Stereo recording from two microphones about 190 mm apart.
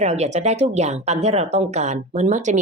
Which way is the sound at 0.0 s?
35° right (ahead or behind).